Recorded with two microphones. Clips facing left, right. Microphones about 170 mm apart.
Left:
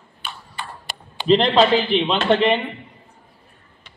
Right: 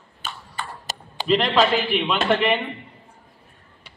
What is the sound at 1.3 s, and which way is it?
Speech, 30° left (ahead or behind).